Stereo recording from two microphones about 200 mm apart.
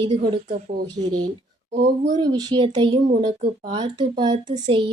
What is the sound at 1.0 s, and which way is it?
Speech, 35° right (ahead or behind).